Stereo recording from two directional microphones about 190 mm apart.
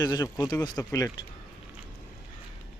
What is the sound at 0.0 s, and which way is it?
Speech, 20° left (ahead or behind).